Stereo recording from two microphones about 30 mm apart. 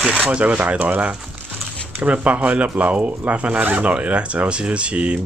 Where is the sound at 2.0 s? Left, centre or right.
Right.